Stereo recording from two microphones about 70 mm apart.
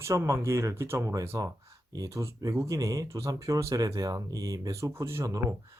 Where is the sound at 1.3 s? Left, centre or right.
Right.